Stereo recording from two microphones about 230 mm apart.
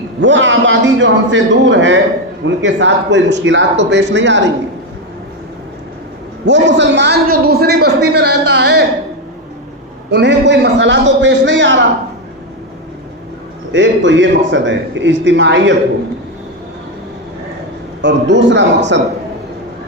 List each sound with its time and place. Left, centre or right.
0.2 s a man's voice: right
6.4 s a man's voice: right
10.1 s a man's voice: right
13.7 s a man's voice: right
18.0 s a man's voice: right